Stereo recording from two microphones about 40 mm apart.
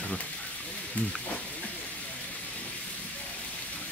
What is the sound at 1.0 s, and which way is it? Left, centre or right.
Speech, left.